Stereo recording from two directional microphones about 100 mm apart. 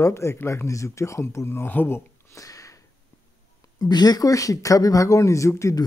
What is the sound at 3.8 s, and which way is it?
Speech, 45° left (ahead or behind).